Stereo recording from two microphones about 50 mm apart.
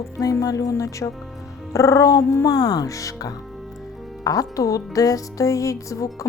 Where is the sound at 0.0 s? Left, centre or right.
Left.